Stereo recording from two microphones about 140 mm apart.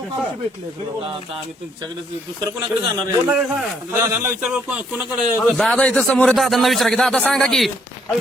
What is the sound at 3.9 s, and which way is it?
Speech, 20° right (ahead or behind).